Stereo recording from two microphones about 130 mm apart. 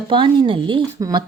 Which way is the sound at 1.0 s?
30° right (ahead or behind).